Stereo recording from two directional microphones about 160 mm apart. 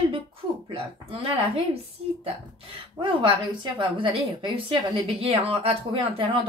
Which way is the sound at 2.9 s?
30° right (ahead or behind).